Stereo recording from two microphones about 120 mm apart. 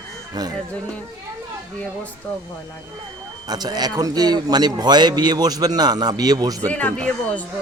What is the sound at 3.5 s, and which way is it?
A man's voice, 35° right (ahead or behind).